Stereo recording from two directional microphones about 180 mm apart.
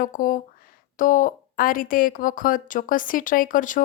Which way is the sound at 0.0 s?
50° left (ahead or behind).